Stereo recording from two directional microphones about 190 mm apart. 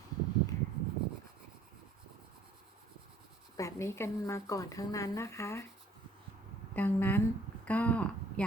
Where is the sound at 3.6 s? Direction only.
15° left (ahead or behind).